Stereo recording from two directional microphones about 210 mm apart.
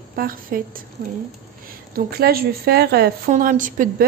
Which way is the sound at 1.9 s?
45° right (ahead or behind).